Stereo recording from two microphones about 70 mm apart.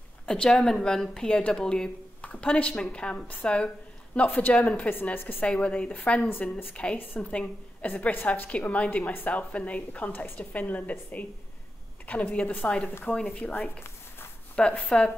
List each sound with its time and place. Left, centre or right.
0.3 s speech: centre
4.3 s a woman's voice: left
5.4 s a woman's voice: centre
12.1 s a woman's voice: centre
14.5 s speech: centre